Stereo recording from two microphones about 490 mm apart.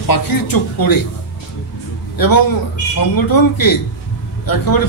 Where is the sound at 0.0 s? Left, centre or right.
Left.